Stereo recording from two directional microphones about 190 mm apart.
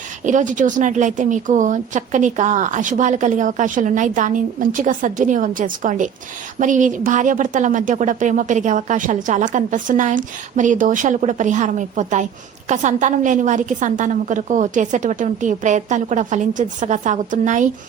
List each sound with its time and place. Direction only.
0.3 s speech: 40° right (ahead or behind)